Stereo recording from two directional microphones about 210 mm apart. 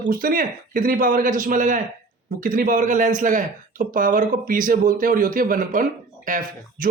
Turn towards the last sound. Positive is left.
turn(degrees=-40)  # may be behind; listen again after turning